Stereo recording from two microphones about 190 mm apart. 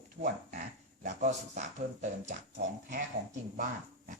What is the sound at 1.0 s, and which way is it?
Speech, 40° right (ahead or behind).